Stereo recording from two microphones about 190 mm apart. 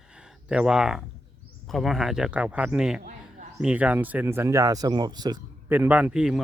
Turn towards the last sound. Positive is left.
turn(degrees=-5)  # may be behind; listen again after turning